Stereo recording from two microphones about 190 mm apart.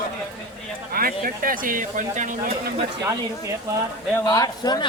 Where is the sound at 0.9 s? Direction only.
50° right (ahead or behind).